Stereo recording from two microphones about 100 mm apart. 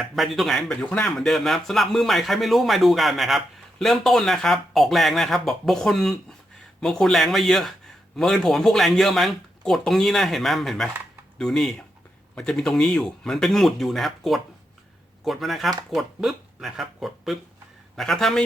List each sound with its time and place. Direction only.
0.0 s speech: centre (ahead or behind)
0.7 s speech: 15° left (ahead or behind)